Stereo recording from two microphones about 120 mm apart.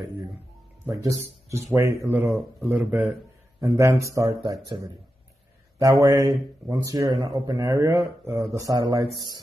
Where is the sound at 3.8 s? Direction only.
25° right (ahead or behind).